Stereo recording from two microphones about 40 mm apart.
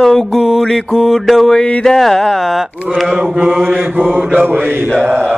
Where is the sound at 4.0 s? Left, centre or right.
Right.